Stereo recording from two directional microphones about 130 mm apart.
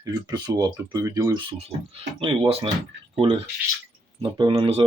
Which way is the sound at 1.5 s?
50° right (ahead or behind).